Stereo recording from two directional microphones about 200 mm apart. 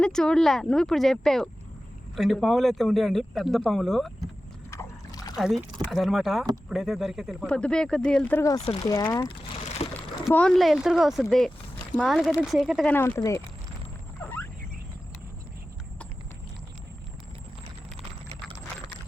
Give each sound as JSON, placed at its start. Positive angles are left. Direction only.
{"t": 0.0, "sound": "speech", "side_deg": 5}
{"t": 4.7, "sound": "boat", "side_deg": 15}
{"t": 5.4, "sound": "speech", "side_deg": 0}
{"t": 8.6, "sound": "speech", "side_deg": 25}
{"t": 8.9, "sound": "speech", "side_deg": 15}
{"t": 9.8, "sound": "speech", "side_deg": 30}
{"t": 10.2, "sound": "speech", "side_deg": 5}
{"t": 14.2, "sound": "a sound", "side_deg": 10}